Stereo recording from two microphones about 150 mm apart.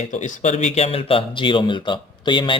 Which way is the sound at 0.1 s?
55° left (ahead or behind).